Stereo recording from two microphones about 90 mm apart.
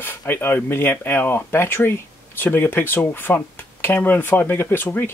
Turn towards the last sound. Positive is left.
turn(degrees=20)  # may be behind; listen again after turning